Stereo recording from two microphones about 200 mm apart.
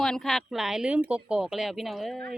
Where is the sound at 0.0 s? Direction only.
Centre (ahead or behind).